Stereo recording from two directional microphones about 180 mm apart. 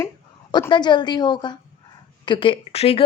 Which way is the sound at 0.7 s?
25° left (ahead or behind).